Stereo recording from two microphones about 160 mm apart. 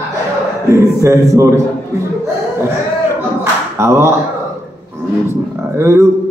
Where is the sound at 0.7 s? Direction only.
15° right (ahead or behind).